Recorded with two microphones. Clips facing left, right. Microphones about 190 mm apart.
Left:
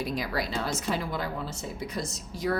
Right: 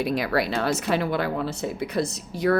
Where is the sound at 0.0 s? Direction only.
65° right (ahead or behind).